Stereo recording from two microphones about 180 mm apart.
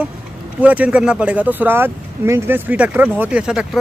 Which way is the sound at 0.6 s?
10° right (ahead or behind).